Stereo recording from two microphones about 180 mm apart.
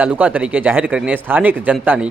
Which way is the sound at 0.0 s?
10° right (ahead or behind).